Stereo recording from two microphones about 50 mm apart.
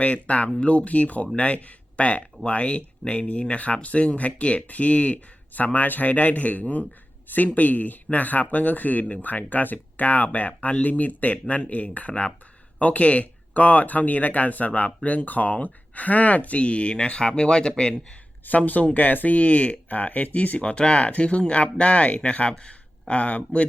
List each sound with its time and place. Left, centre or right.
0.0 s speech: left
18.4 s speech: left